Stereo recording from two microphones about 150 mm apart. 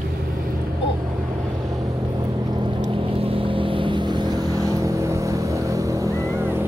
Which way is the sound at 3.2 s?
35° right (ahead or behind).